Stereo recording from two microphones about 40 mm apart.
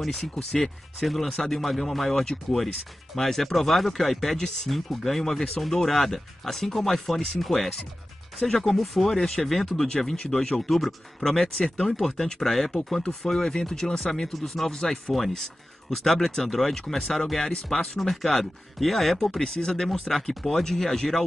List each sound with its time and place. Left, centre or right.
0.0 s speech: centre
10.1 s speech: centre
10.7 s speech: centre
15.1 s speech: centre
19.4 s speech: centre
19.8 s speech: centre